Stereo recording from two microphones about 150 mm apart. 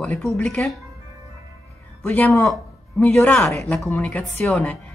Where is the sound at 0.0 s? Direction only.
5° left (ahead or behind).